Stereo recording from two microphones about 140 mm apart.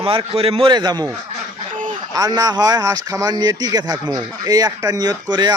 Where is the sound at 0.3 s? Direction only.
45° right (ahead or behind).